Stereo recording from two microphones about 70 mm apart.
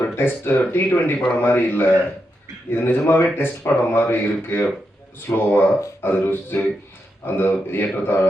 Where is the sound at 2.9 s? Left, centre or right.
Left.